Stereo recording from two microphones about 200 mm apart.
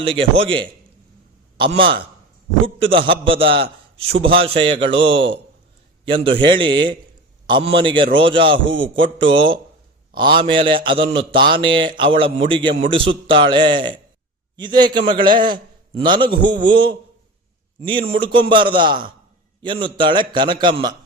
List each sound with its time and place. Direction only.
0.0 s a man's voice: 30° right (ahead or behind)
6.1 s a man's voice: 25° right (ahead or behind)